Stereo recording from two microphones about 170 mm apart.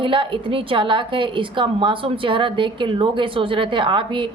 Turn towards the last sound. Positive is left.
turn(degrees=-30)  # may be behind; listen again after turning